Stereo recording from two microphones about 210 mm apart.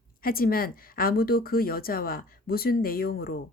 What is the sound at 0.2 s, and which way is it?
Speech, 45° left (ahead or behind).